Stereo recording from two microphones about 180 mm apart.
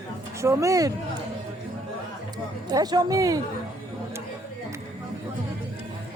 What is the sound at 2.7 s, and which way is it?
Speech, 20° right (ahead or behind).